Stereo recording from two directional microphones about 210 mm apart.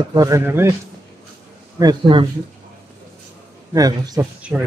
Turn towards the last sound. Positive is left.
turn(degrees=0)  # may be behind; listen again after turning